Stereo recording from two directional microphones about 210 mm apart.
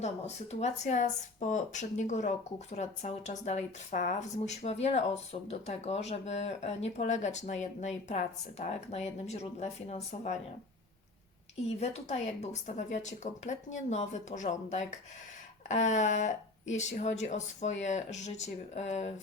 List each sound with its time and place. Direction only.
0.6 s speech: 35° left (ahead or behind)
11.8 s speech: 30° left (ahead or behind)